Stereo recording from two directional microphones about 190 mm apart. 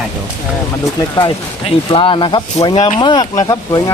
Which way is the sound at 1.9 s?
25° left (ahead or behind).